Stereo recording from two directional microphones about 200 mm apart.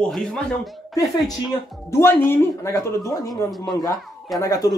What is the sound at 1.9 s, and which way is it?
Speech, 10° left (ahead or behind).